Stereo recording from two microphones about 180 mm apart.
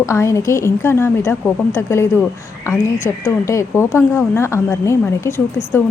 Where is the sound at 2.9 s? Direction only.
45° left (ahead or behind).